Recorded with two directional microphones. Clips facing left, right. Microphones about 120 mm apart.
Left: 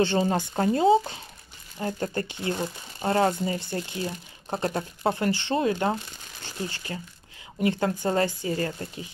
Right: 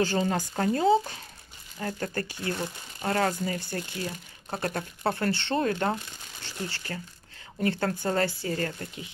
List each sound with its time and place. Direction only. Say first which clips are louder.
0.0 s speech: left 3 dB; 25° left (ahead or behind)